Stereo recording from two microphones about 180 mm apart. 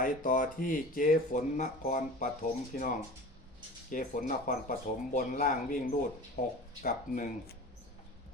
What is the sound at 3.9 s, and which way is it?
Speech, 45° left (ahead or behind).